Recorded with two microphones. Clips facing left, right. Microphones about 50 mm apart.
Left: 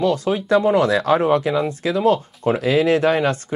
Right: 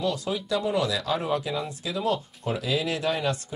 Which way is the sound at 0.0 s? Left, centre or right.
Left.